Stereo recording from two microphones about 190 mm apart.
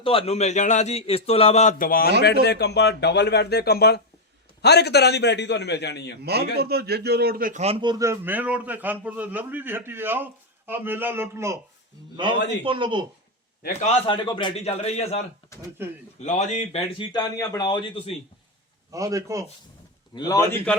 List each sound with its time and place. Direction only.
0.0 s a man's voice: 30° left (ahead or behind); by 6.1 s 60° left (ahead or behind)
6.2 s a man's voice: 55° right (ahead or behind)
7.6 s a man's voice: 30° right (ahead or behind)
12.1 s speech: 25° right (ahead or behind)
13.8 s a man's voice: 30° left (ahead or behind)
16.2 s speech: 40° left (ahead or behind)
18.9 s a man's voice: 15° right (ahead or behind)
20.1 s speech: 20° left (ahead or behind)